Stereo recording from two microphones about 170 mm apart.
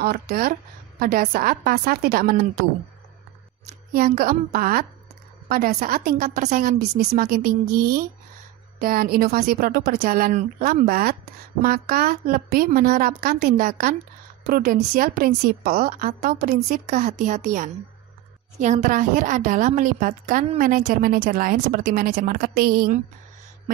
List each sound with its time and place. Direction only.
0.0 s a woman's voice: 65° right (ahead or behind)
3.9 s a woman's voice: 60° right (ahead or behind)
16.8 s a woman's voice: 45° right (ahead or behind)